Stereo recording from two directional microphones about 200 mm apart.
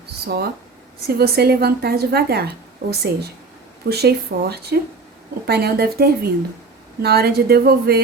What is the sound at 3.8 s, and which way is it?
Speech, 55° right (ahead or behind).